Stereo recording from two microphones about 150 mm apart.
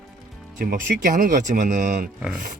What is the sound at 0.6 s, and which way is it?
Speech, 70° right (ahead or behind).